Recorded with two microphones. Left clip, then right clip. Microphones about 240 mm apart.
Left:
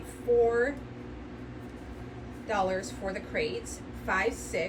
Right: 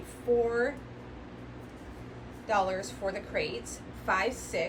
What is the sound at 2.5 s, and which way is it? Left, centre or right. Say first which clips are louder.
A woman's voice: right 1 dB; centre.